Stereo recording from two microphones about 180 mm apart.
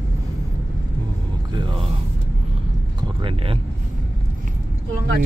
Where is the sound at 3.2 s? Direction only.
30° right (ahead or behind).